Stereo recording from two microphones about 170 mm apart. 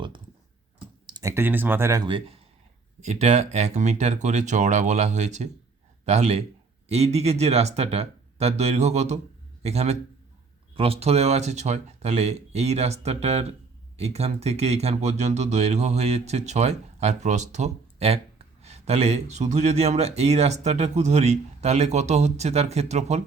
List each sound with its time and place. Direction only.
1.1 s speech: 15° right (ahead or behind); by 23.2 s 40° right (ahead or behind)